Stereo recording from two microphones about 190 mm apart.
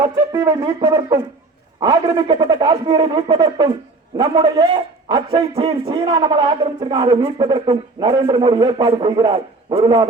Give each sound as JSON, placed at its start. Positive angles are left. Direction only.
{"t": 0.0, "sound": "music", "side_deg": -20}
{"t": 1.8, "sound": "a man's voice", "side_deg": -20}